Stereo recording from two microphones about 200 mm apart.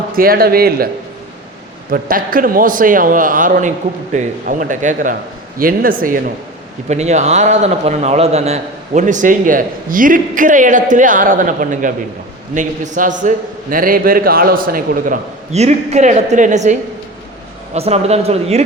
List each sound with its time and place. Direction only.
0.2 s a man's voice: 50° right (ahead or behind)
1.9 s a man's voice: 45° right (ahead or behind)
6.8 s a man's voice: 35° right (ahead or behind)
17.7 s a man's voice: 30° right (ahead or behind)